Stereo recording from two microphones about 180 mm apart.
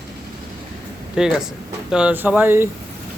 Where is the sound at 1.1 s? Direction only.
5° right (ahead or behind).